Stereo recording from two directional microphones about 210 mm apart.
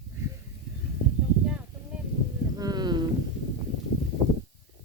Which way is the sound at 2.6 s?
20° right (ahead or behind).